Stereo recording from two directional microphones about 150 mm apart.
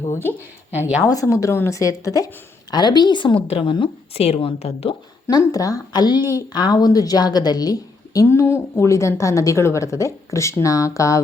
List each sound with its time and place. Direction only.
0.1 s a woman's voice: 15° left (ahead or behind); by 4.9 s 40° left (ahead or behind)
5.3 s a woman's voice: 25° left (ahead or behind)